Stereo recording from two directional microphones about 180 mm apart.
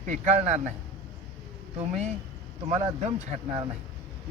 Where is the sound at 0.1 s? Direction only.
40° right (ahead or behind).